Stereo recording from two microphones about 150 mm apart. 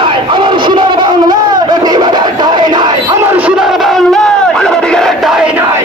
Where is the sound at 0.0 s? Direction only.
35° right (ahead or behind); by 5.5 s centre (ahead or behind).